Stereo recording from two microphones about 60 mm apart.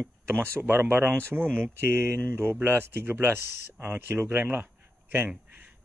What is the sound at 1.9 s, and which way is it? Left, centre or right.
Speech, right.